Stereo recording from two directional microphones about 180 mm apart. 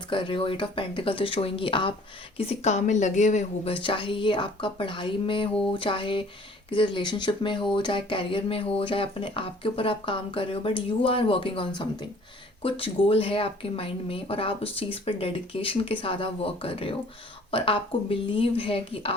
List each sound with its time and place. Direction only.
0.1 s speech: 30° left (ahead or behind)